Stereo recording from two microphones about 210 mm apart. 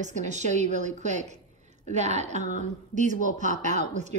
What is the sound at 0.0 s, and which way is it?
A woman's voice, 35° right (ahead or behind).